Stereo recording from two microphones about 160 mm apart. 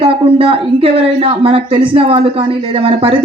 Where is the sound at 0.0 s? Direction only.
35° right (ahead or behind).